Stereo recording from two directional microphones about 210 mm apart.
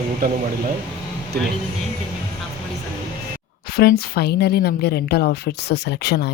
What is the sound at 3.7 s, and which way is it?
A woman's voice, 45° left (ahead or behind).